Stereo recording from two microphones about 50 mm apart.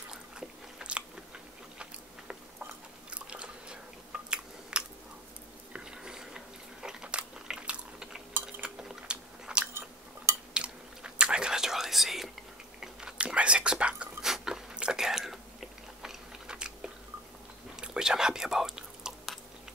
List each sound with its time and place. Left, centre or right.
0.1 s biting: centre
2.6 s chewing: right
5.7 s biting: centre
8.3 s cutlery: right
8.6 s biting: centre
10.5 s chewing: centre
12.8 s whispering: centre
14.2 s biting: centre
17.7 s whispering: centre